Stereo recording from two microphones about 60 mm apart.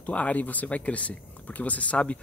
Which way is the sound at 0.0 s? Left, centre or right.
Left.